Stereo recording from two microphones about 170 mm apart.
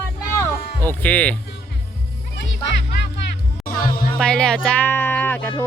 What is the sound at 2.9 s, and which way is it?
Music, 90° left.